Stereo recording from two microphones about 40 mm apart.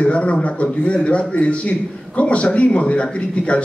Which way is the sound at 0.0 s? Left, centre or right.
Left.